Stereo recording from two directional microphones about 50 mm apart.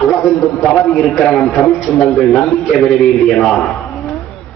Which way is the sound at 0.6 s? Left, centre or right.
Centre.